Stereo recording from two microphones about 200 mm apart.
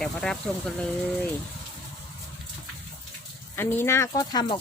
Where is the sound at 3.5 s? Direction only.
10° left (ahead or behind).